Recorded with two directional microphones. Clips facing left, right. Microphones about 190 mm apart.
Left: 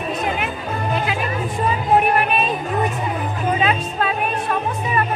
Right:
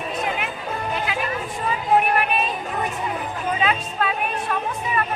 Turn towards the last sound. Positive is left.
turn(degrees=30)  # may be behind; listen again after turning